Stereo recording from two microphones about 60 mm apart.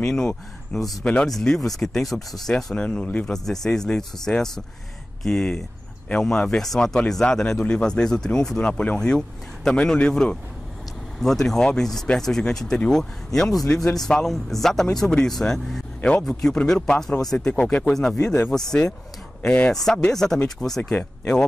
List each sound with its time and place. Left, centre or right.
0.0 s speech: centre
1.0 s speech: centre
1.3 s speech: centre
2.5 s speech: centre
3.4 s speech: centre
11.1 s speech: centre
16.0 s speech: centre
17.6 s speech: centre
19.4 s speech: centre
19.7 s speech: centre